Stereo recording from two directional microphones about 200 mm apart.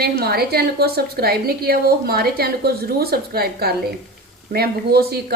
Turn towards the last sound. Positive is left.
turn(degrees=-50)  # may be behind; listen again after turning